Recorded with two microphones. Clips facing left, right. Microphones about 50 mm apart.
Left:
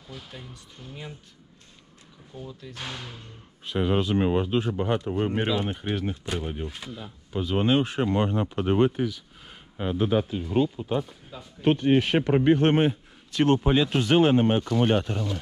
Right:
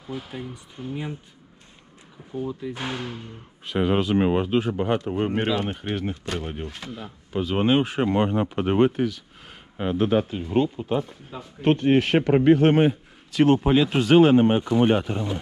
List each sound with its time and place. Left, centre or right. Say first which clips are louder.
0.0 s speech: right 9 dB; right
2.3 s speech: right 10 dB; centre
3.6 s speech: right 3 dB; right
7.6 s speech: right 2 dB; right
8.0 s speech: right 3 dB; right
11.0 s speech: right 2 dB; centre
11.6 s speech: right 2 dB; right
13.8 s speech: right 3 dB; right
14.1 s speech: right 5 dB; right
14.6 s speech: right 3 dB; right